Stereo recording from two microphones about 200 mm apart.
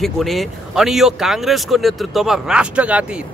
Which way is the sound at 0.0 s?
Centre (ahead or behind).